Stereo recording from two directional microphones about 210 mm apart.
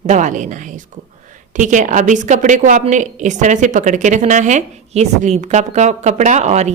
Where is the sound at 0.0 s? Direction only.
35° right (ahead or behind).